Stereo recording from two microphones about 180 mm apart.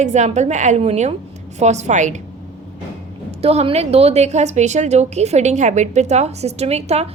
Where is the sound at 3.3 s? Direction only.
35° right (ahead or behind).